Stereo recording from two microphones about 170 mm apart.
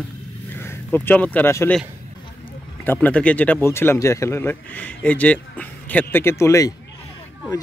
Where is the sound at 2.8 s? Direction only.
10° left (ahead or behind).